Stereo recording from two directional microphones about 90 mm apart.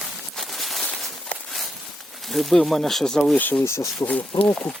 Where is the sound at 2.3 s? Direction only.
Centre (ahead or behind).